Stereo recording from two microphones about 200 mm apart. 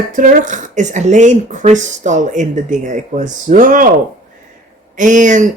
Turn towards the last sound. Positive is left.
turn(degrees=-40)  # may be behind; listen again after turning